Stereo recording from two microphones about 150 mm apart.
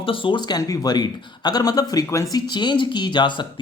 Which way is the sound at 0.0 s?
35° left (ahead or behind).